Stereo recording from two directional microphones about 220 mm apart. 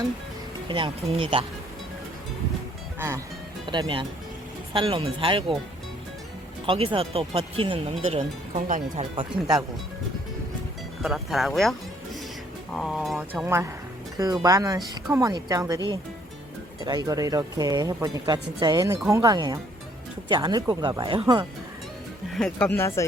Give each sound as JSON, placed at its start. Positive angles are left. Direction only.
{"t": 0.7, "sound": "speech", "side_deg": -25}
{"t": 3.7, "sound": "speech", "side_deg": -20}
{"t": 6.7, "sound": "speech", "side_deg": -25}
{"t": 9.0, "sound": "speech", "side_deg": -20}
{"t": 11.0, "sound": "speech", "side_deg": 0}
{"t": 12.7, "sound": "speech", "side_deg": 0}
{"t": 16.8, "sound": "speech", "side_deg": -15}
{"t": 22.4, "sound": "speech", "side_deg": 5}